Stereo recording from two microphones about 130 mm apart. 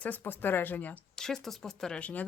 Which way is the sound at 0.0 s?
15° left (ahead or behind).